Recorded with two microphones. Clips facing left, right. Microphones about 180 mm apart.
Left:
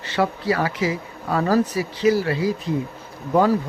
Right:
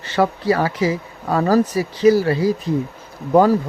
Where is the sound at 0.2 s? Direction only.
40° right (ahead or behind).